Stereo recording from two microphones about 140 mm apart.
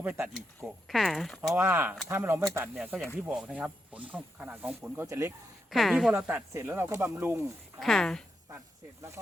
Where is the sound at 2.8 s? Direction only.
5° right (ahead or behind).